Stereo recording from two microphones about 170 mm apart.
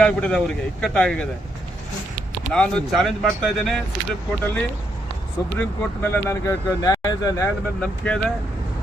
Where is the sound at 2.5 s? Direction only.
5° left (ahead or behind).